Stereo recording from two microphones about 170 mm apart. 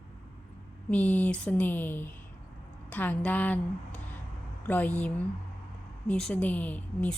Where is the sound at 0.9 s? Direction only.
10° left (ahead or behind).